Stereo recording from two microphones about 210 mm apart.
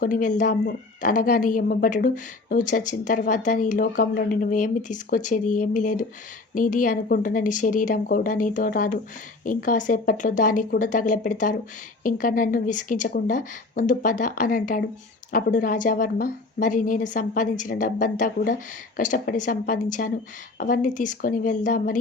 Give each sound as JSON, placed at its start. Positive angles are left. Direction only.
{"t": 0.0, "sound": "a woman's voice", "side_deg": 40}